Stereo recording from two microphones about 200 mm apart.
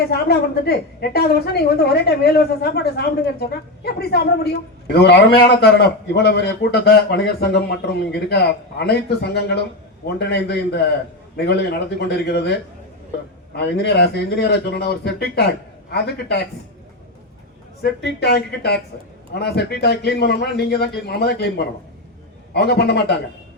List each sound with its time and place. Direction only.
0.1 s a woman's voice: 50° left (ahead or behind)
13.6 s a woman's voice: 55° left (ahead or behind)
17.8 s a woman's voice: 55° left (ahead or behind)
22.5 s a woman's voice: 55° left (ahead or behind)